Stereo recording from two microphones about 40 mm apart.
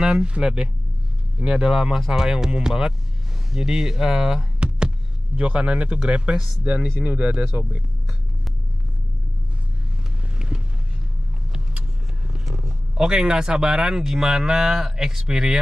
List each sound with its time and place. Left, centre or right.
0.0 s speech: right
4.6 s a sound: right
6.6 s speech: right
10.3 s vehicle: right
12.9 s speech: centre